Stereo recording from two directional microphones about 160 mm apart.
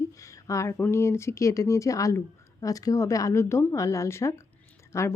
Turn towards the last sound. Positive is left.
turn(degrees=15)  # may be behind; listen again after turning